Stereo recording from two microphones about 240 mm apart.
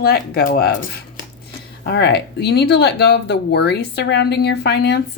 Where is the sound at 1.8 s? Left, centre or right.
Left.